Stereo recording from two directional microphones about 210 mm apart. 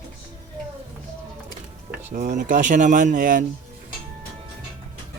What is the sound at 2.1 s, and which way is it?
Speech, 35° right (ahead or behind).